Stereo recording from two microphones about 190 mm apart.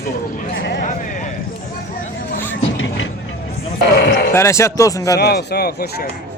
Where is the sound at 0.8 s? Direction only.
45° left (ahead or behind).